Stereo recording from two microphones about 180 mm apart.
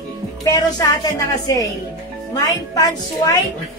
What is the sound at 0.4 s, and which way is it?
A woman's voice, 20° left (ahead or behind).